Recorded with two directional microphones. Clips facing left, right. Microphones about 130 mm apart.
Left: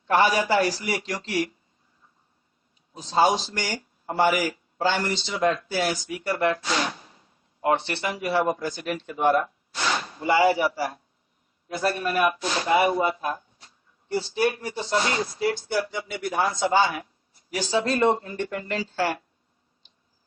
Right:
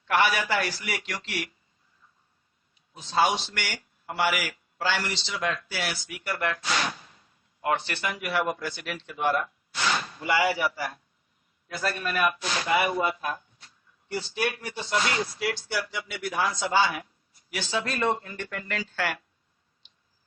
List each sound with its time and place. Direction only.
0.0 s a man's voice: 30° left (ahead or behind)
2.9 s a man's voice: 35° left (ahead or behind)
5.0 s speech: 50° left (ahead or behind)
5.4 s a man's voice: 30° left (ahead or behind)
9.2 s speech: 30° left (ahead or behind)
15.9 s speech: 45° left (ahead or behind)
17.5 s speech: 35° left (ahead or behind)